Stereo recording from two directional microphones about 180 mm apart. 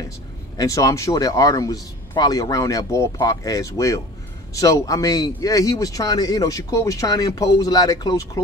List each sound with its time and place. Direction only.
0.6 s speech: 20° left (ahead or behind)